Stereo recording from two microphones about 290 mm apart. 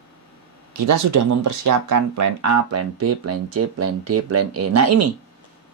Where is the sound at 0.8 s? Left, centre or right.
Right.